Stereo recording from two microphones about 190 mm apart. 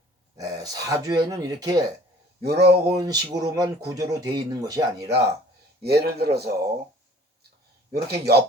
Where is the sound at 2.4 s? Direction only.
60° right (ahead or behind).